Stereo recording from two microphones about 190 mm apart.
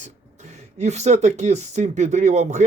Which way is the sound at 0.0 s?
40° right (ahead or behind).